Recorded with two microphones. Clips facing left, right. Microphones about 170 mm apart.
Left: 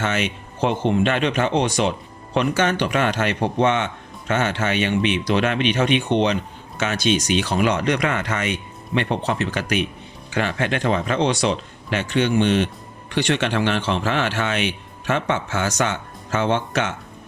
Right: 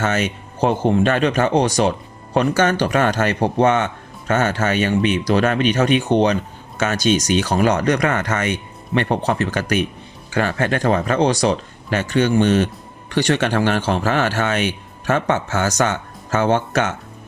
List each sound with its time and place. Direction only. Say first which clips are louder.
0.0 s speech: right 3 dB; 45° right (ahead or behind)